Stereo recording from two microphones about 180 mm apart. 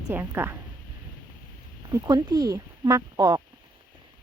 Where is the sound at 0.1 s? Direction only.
15° right (ahead or behind).